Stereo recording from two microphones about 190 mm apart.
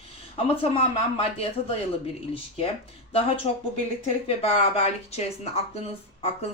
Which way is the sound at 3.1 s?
30° left (ahead or behind).